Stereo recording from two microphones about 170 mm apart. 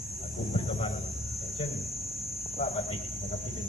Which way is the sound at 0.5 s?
35° left (ahead or behind).